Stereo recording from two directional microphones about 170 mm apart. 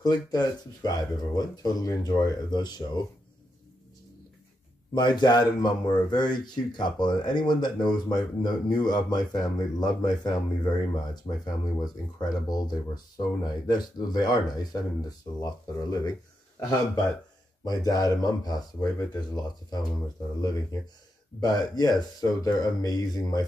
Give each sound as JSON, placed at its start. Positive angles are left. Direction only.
{"t": 0.0, "sound": "speech", "side_deg": 25}
{"t": 4.9, "sound": "speech", "side_deg": 25}
{"t": 21.4, "sound": "speech", "side_deg": 25}